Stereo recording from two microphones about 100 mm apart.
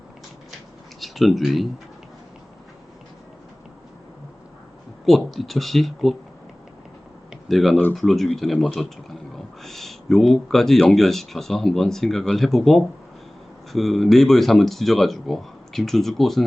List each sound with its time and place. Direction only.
0.9 s speech: centre (ahead or behind)
5.0 s speech: centre (ahead or behind)
7.4 s speech: centre (ahead or behind)